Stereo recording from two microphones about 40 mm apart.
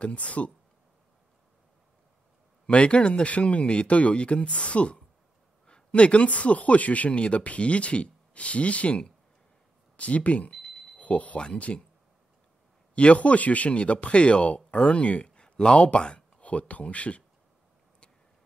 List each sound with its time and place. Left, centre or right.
0.0 s speech: left
2.6 s speech: left
12.9 s speech: left
16.3 s speech: left